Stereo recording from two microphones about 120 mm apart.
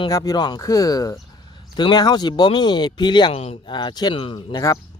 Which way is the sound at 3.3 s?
55° left (ahead or behind).